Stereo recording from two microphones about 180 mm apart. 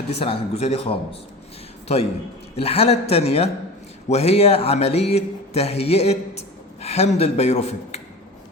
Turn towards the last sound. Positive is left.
turn(degrees=35)  # may be behind; listen again after turning